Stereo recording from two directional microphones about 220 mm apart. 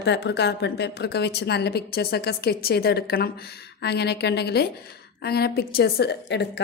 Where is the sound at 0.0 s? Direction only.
50° left (ahead or behind).